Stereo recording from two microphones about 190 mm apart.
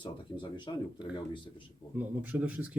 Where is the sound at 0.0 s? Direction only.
25° left (ahead or behind).